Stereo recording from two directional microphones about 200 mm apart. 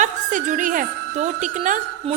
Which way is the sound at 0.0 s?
40° right (ahead or behind).